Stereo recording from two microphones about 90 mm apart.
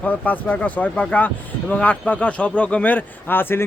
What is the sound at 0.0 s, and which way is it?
Speech, 15° left (ahead or behind).